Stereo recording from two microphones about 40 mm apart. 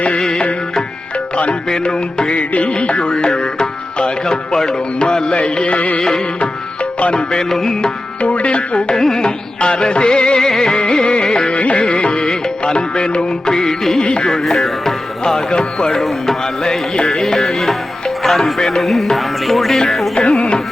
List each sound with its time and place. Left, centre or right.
1.7 s music: centre
2.3 s music: left
6.0 s music: centre
8.2 s music: left
9.0 s music: centre
9.6 s music: left
14.0 s music: left
14.3 s music: centre
16.0 s music: centre
20.1 s music: left